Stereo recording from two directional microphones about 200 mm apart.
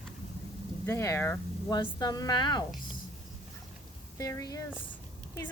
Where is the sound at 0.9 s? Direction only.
15° left (ahead or behind).